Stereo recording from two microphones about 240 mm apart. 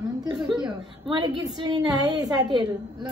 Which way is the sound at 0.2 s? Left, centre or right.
Centre.